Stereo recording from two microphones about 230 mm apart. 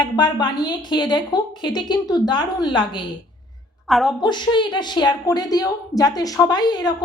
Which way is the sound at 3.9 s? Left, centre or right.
Centre.